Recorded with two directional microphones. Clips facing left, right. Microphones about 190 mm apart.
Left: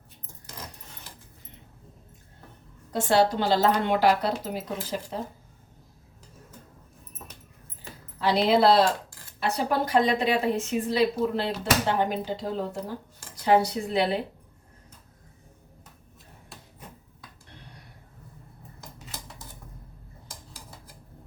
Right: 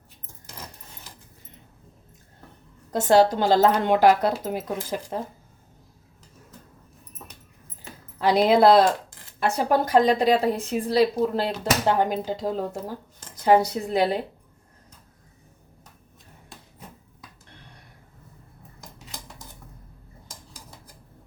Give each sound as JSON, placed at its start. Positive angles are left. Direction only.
{"t": 2.9, "sound": "a woman's voice", "side_deg": -45}
{"t": 8.2, "sound": "a woman's voice", "side_deg": -45}